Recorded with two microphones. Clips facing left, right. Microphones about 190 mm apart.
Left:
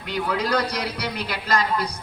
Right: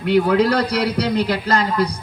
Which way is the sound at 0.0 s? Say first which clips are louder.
Right 11 dB; 65° right (ahead or behind).